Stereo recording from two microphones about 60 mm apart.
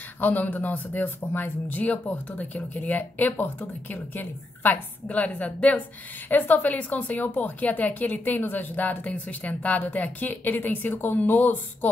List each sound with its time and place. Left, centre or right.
0.2 s a woman's voice: left